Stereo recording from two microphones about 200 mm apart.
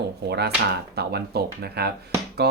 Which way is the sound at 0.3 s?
55° right (ahead or behind).